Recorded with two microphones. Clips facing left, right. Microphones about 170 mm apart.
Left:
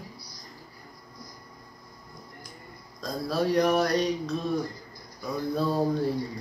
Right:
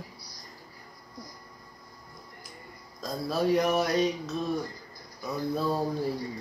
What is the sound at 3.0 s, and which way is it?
Speech, 5° right (ahead or behind).